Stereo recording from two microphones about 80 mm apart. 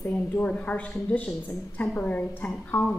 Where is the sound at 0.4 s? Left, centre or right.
Centre.